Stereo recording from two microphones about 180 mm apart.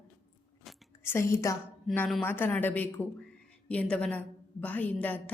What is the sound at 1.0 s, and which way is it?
Speech, 15° left (ahead or behind).